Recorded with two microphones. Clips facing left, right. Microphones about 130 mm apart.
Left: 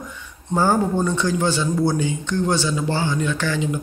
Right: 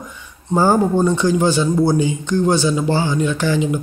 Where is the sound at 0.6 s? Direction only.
10° right (ahead or behind).